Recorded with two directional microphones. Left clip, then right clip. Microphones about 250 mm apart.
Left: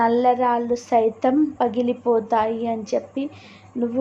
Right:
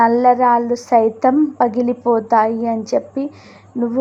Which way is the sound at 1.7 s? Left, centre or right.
Centre.